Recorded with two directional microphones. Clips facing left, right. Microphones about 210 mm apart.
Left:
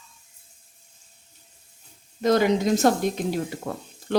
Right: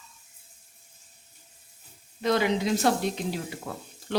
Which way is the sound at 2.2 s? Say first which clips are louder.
Left 5 dB; 45° left (ahead or behind).